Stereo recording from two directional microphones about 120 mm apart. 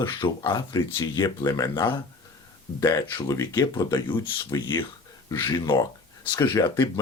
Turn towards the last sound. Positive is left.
turn(degrees=35)  # may be behind; listen again after turning